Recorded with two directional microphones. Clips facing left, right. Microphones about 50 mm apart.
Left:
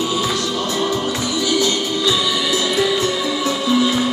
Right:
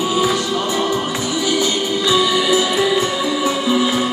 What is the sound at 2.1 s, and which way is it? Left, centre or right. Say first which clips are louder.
Music: right 6 dB; centre.